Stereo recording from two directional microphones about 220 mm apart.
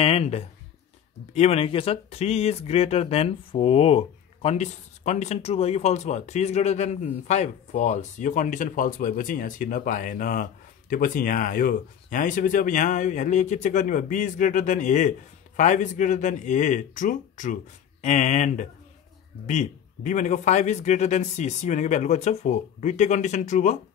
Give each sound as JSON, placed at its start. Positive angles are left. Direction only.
{"t": 0.0, "sound": "speech", "side_deg": 25}